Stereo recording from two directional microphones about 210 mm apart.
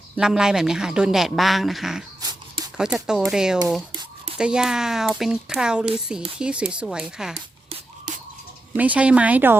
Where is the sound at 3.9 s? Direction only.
25° right (ahead or behind).